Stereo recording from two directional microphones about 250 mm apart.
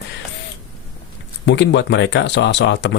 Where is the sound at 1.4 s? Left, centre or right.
Left.